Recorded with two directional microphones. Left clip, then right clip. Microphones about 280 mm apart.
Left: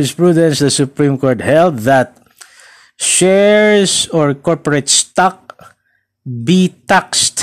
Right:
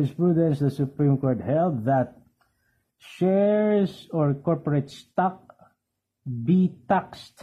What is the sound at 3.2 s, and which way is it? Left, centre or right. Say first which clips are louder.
A man's voice: left 12 dB; left.